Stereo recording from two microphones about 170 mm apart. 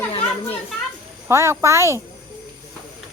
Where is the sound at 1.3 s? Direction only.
15° right (ahead or behind).